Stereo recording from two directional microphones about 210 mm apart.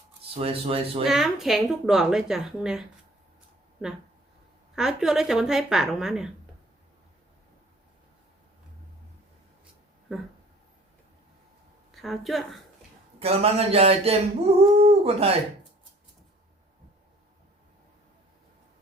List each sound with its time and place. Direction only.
0.3 s speech: 25° right (ahead or behind)
1.0 s a woman's voice: centre (ahead or behind)
4.7 s a woman's voice: centre (ahead or behind)
10.1 s a woman's voice: centre (ahead or behind)
11.9 s a woman's voice: centre (ahead or behind)
13.1 s speech: 30° right (ahead or behind)